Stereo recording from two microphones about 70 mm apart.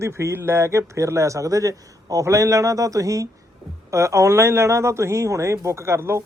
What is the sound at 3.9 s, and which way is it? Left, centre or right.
Speech, right.